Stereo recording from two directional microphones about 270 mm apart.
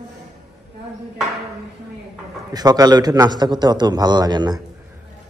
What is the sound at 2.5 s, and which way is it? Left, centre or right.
A man's voice, centre.